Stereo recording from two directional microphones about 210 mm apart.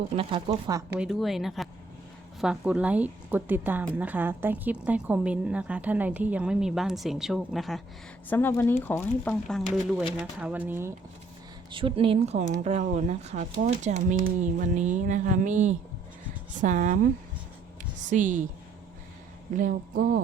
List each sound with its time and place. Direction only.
0.2 s speech: 25° right (ahead or behind)
0.9 s a woman's voice: centre (ahead or behind)
11.7 s speech: 25° right (ahead or behind)
19.5 s speech: 40° right (ahead or behind)